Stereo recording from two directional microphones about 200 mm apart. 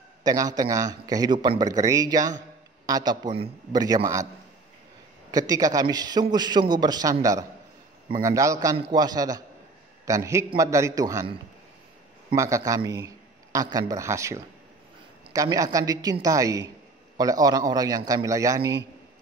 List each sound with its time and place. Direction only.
0.2 s speech: 20° right (ahead or behind)
5.3 s a woman's voice: 20° right (ahead or behind)
12.4 s a man's voice: 15° right (ahead or behind)